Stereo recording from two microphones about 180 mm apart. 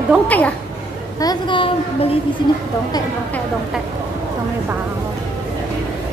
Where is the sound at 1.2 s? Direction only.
25° left (ahead or behind).